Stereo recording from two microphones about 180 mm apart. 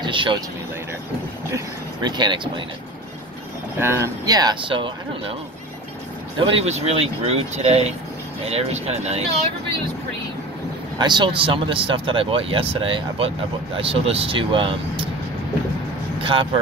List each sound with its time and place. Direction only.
0.0 s speech: 25° right (ahead or behind)
2.0 s speech: 25° right (ahead or behind)
3.7 s speech: 15° right (ahead or behind)
6.5 s speech: 35° right (ahead or behind)
11.0 s speech: 25° right (ahead or behind)
16.2 s speech: 30° right (ahead or behind)